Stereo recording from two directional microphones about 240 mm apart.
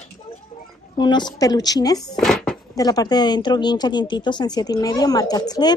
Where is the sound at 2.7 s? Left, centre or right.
Centre.